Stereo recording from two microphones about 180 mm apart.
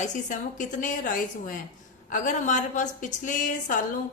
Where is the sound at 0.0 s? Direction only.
45° left (ahead or behind).